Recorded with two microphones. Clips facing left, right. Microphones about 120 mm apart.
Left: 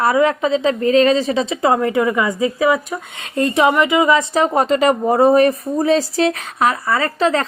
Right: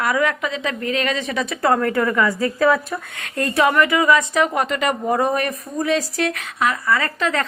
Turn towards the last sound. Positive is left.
turn(degrees=30)  # may be behind; listen again after turning